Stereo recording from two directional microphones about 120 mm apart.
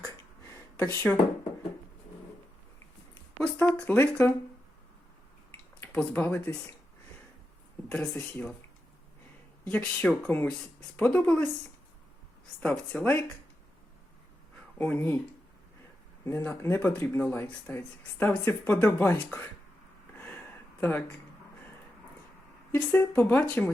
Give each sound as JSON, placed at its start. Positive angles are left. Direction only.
{"t": 0.0, "sound": "a sound", "side_deg": 15}
{"t": 3.4, "sound": "speech", "side_deg": 10}
{"t": 5.8, "sound": "speech", "side_deg": 10}
{"t": 7.9, "sound": "speech", "side_deg": 10}
{"t": 9.6, "sound": "speech", "side_deg": 10}
{"t": 12.5, "sound": "speech", "side_deg": 10}
{"t": 14.8, "sound": "speech", "side_deg": 15}
{"t": 16.2, "sound": "speech", "side_deg": 20}
{"t": 22.7, "sound": "speech", "side_deg": 15}